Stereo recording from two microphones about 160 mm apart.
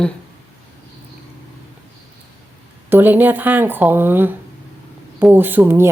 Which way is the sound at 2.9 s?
10° right (ahead or behind).